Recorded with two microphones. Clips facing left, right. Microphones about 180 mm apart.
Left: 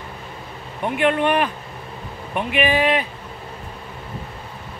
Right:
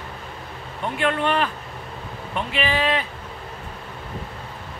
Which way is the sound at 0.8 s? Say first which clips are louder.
Left 4 dB; 15° left (ahead or behind).